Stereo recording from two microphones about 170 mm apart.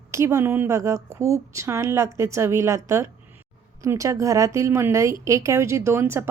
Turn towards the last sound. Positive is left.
turn(degrees=-15)  # may be behind; listen again after turning